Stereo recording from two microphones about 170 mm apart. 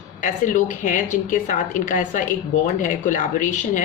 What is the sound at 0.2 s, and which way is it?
Speech, 50° left (ahead or behind).